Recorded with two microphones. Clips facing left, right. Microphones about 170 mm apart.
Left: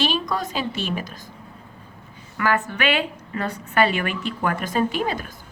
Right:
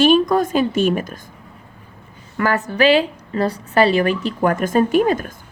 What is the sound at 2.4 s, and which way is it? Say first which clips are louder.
A woman's voice: right 6 dB; 40° right (ahead or behind).